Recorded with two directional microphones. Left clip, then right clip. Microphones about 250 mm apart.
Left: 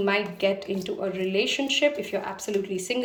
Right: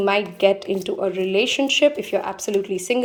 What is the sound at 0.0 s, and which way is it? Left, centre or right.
A woman's voice, centre.